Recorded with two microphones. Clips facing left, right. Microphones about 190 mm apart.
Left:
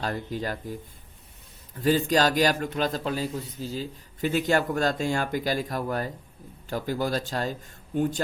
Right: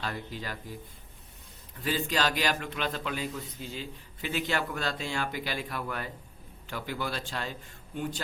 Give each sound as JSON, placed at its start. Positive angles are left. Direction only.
{"t": 0.0, "sound": "speech", "side_deg": 45}
{"t": 1.8, "sound": "speech", "side_deg": 45}